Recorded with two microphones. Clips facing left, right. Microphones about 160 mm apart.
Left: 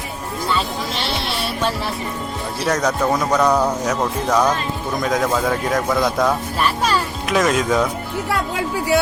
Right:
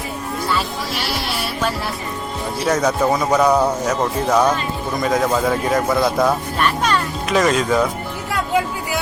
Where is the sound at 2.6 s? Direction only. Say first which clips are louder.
Right 2 dB; 5° right (ahead or behind).